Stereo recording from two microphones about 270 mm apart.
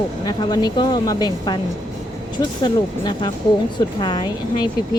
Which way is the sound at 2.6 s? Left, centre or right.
Centre.